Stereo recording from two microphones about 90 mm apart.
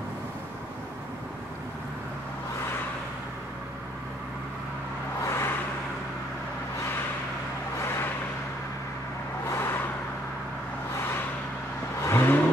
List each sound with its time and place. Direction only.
5.2 s vehicle: 25° left (ahead or behind)
7.8 s vehicle: 30° left (ahead or behind)
9.5 s vehicle: 25° left (ahead or behind)
12.0 s vehicle: 25° left (ahead or behind)